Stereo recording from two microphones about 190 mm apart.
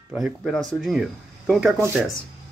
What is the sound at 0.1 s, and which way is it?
Speech, centre (ahead or behind).